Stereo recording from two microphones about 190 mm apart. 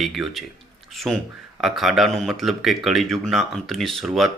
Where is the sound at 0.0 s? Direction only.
Centre (ahead or behind).